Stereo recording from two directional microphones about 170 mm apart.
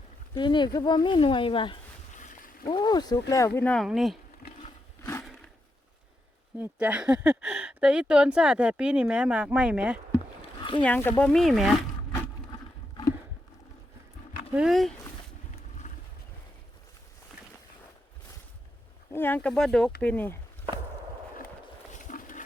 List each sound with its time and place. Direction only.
0.3 s speech: 25° left (ahead or behind)
2.1 s boat: 45° left (ahead or behind)
2.6 s speech: 25° left (ahead or behind)
3.6 s speech: 5° left (ahead or behind)
4.4 s a sound: 60° left (ahead or behind)
6.6 s speech: 10° right (ahead or behind)
10.6 s a sound: 30° left (ahead or behind)
10.8 s speech: 10° left (ahead or behind)
14.5 s speech: 5° right (ahead or behind)
19.1 s speech: 10° left (ahead or behind)
21.9 s a sound: 50° left (ahead or behind)